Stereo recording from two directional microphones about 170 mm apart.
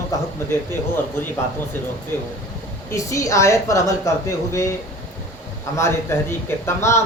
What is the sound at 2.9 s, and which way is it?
A woman's voice, 20° left (ahead or behind).